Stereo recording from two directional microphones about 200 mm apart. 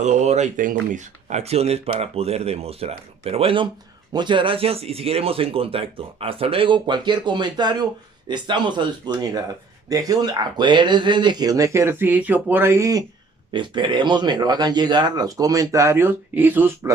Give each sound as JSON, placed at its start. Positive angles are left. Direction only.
{"t": 0.0, "sound": "speech", "side_deg": -35}